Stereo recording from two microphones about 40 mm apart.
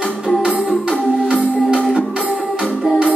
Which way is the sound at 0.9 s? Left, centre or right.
Left.